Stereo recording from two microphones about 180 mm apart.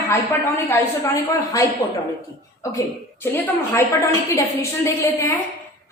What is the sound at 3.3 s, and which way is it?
A woman's voice, 15° left (ahead or behind).